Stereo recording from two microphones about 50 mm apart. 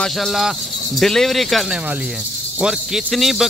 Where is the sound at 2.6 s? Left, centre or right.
Centre.